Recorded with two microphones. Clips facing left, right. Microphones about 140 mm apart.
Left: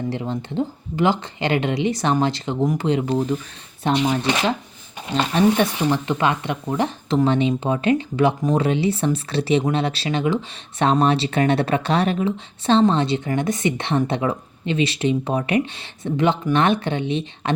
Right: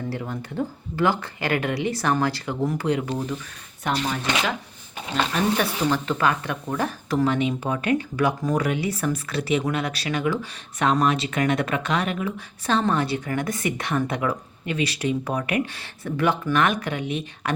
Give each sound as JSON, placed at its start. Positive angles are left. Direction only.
{"t": 0.1, "sound": "speech", "side_deg": 20}